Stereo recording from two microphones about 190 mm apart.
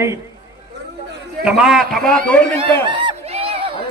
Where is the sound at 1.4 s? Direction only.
Centre (ahead or behind).